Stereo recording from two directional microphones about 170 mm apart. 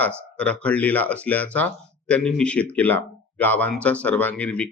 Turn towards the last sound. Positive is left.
turn(degrees=10)  # may be behind; listen again after turning